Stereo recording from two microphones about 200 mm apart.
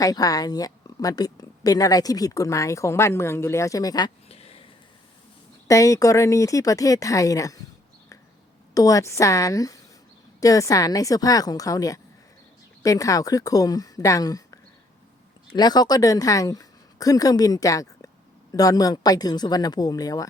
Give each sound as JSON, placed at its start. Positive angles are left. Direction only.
{"t": 0.0, "sound": "a woman's voice", "side_deg": 20}
{"t": 5.6, "sound": "a woman's voice", "side_deg": 15}
{"t": 8.7, "sound": "a woman's voice", "side_deg": 15}